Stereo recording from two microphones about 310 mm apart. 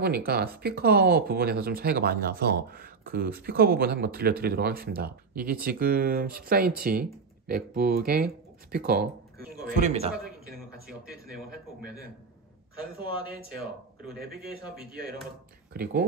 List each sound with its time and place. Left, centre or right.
0.0 s speech: right
10.9 s speech: centre
15.7 s speech: right